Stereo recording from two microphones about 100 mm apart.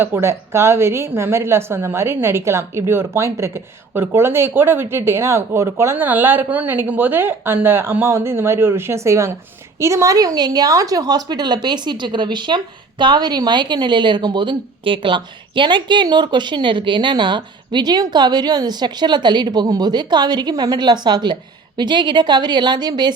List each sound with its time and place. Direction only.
0.0 s a woman's voice: 25° right (ahead or behind); by 23.1 s 45° right (ahead or behind)